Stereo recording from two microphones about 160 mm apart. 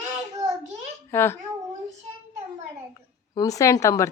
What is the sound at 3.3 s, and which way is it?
Speech, 20° left (ahead or behind).